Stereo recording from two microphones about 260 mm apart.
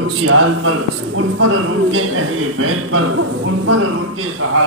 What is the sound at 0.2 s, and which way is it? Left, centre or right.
A man's voice, right.